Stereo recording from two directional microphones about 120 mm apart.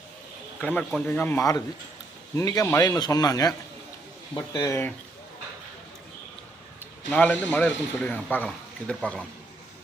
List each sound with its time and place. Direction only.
0.6 s a man's voice: 10° left (ahead or behind)
1.4 s speech: 30° left (ahead or behind)
7.1 s a man's voice: 10° left (ahead or behind)